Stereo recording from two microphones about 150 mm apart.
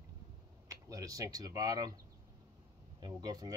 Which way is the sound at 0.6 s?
20° right (ahead or behind).